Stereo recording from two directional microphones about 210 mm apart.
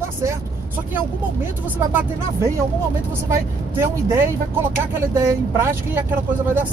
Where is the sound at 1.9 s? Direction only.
10° right (ahead or behind).